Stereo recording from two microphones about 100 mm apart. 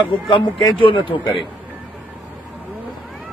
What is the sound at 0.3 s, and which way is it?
Speech, 55° left (ahead or behind).